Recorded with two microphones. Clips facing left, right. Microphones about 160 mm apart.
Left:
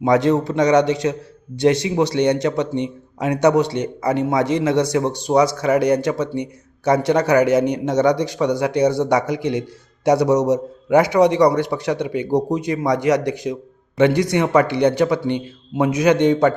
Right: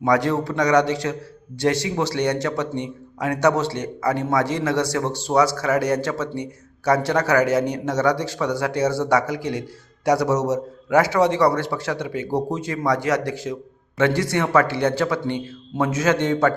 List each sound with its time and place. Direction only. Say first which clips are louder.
0.0 s a man's voice: left 4 dB; 20° left (ahead or behind)